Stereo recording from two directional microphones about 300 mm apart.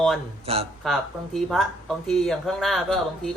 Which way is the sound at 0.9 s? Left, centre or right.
Centre.